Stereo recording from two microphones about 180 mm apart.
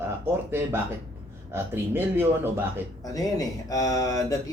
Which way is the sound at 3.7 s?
20° left (ahead or behind).